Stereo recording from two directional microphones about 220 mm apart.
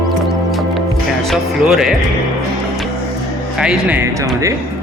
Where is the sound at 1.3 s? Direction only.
Centre (ahead or behind).